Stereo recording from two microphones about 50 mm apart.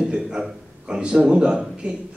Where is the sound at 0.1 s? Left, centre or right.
Centre.